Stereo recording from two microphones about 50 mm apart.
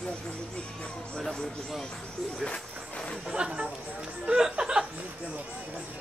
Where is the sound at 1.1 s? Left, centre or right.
Centre.